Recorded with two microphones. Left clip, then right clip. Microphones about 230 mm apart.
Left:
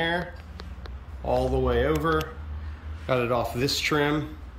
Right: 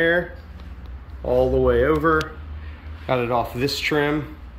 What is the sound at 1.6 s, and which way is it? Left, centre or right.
Speech, centre.